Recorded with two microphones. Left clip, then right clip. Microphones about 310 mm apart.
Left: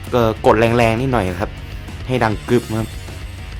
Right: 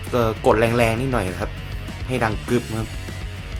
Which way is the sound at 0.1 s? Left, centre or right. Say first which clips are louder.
Left 4 dB; left.